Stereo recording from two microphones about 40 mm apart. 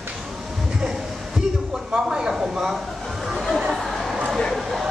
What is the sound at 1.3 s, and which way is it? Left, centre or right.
Speech, centre.